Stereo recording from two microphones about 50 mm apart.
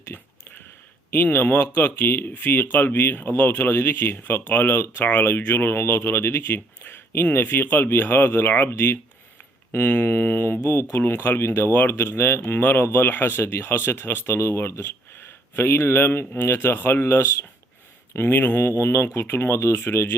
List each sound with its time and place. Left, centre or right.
0.1 s a sound: left
1.1 s speech: left
14.3 s speech: left
19.5 s speech: left